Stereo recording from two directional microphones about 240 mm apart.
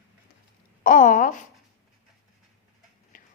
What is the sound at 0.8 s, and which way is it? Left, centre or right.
Speech, left.